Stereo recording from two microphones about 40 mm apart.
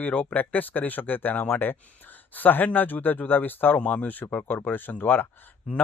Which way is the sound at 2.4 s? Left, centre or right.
Left.